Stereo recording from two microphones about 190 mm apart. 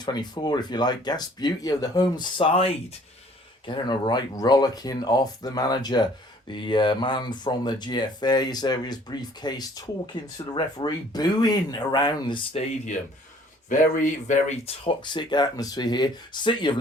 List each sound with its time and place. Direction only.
0.0 s speech: 20° left (ahead or behind)
13.7 s speech: 45° left (ahead or behind); by 16.7 s 25° left (ahead or behind)